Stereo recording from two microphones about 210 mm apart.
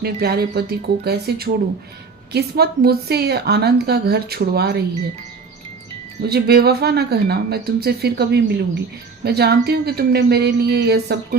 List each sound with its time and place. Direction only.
0.0 s a woman's voice: 50° right (ahead or behind)
6.2 s a woman's voice: 50° right (ahead or behind)